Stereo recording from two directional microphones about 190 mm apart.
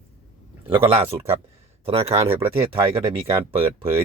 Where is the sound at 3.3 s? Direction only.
30° right (ahead or behind).